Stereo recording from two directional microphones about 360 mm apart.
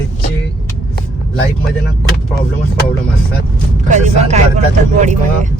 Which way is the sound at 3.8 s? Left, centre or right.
Centre.